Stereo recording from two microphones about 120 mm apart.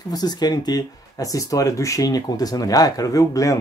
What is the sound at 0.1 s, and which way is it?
Speech, 35° left (ahead or behind).